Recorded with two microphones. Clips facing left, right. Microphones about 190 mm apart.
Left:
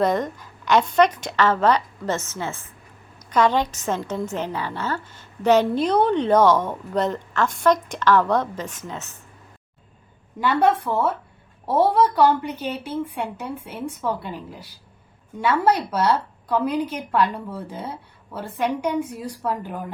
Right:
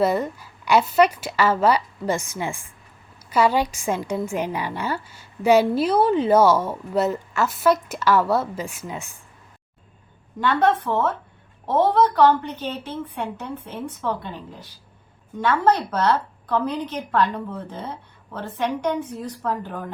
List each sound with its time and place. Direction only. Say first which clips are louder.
0.0 s a woman's voice: even; 10° right (ahead or behind)
10.4 s a woman's voice: even; 10° left (ahead or behind)